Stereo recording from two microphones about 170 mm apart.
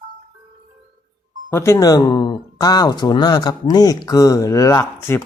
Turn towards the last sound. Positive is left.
turn(degrees=15)  # may be behind; listen again after turning